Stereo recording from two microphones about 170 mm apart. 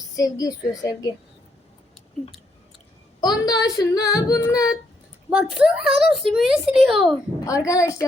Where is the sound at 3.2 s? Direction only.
25° left (ahead or behind).